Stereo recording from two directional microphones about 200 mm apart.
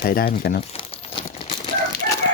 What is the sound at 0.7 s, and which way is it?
Crumpling, 25° left (ahead or behind).